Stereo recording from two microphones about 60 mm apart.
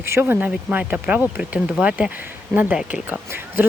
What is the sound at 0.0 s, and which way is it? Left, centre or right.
Speech, right.